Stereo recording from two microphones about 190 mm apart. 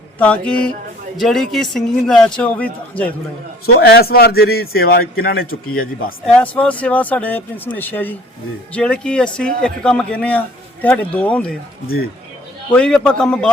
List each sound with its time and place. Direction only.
0.2 s a man's voice: 5° left (ahead or behind)
3.8 s a man's voice: 55° left (ahead or behind)
6.2 s a man's voice: 5° left (ahead or behind)
12.7 s a man's voice: 5° left (ahead or behind)